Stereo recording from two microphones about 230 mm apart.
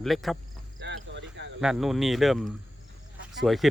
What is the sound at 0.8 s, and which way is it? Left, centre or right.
Cricket, right.